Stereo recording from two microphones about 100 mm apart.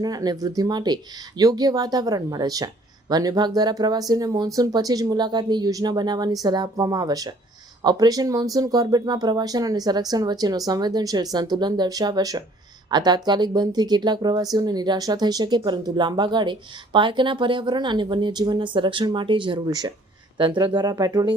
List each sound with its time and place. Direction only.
0.0 s speech: 40° right (ahead or behind)
19.6 s speech: 40° right (ahead or behind)
20.4 s speech: 55° right (ahead or behind)